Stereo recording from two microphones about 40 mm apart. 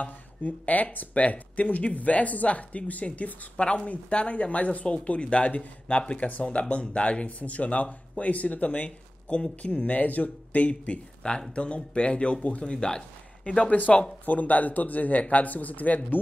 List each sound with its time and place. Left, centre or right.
0.0 s speech: left
6.5 s speech: left
12.7 s speech: centre
13.4 s speech: left
14.2 s speech: left